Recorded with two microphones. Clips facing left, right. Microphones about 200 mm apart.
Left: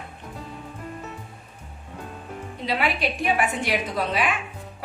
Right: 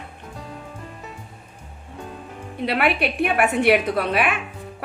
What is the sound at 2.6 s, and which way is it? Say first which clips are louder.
A woman's voice: right 4 dB; 60° right (ahead or behind).